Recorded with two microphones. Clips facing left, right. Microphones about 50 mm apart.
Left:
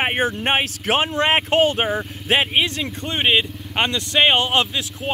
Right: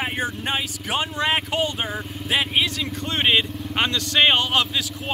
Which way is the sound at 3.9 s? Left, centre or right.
Left.